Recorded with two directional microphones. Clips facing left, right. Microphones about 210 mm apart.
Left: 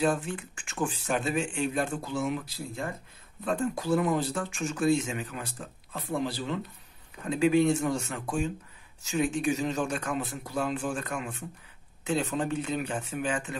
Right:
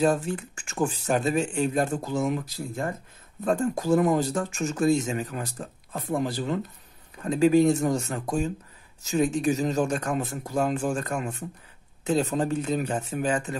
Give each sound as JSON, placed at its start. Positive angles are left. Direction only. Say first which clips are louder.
{"t": 0.0, "sound": "speech", "louder": "right 4 dB", "side_deg": -40}